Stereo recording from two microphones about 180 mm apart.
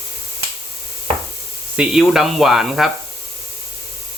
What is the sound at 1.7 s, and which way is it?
Speech, 5° right (ahead or behind).